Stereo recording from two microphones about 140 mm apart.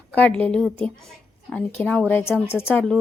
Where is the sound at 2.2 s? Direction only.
10° right (ahead or behind).